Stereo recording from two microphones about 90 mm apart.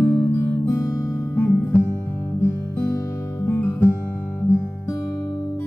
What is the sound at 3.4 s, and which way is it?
Music, 30° left (ahead or behind).